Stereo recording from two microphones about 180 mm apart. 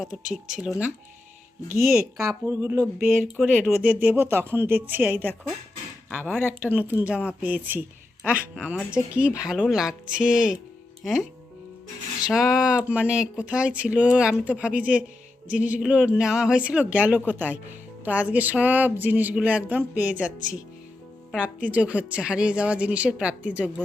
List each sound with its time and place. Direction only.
1.8 s speech: 5° right (ahead or behind)
2.1 s speech: 15° right (ahead or behind)
3.0 s a woman's voice: centre (ahead or behind)
21.7 s speech: 5° right (ahead or behind)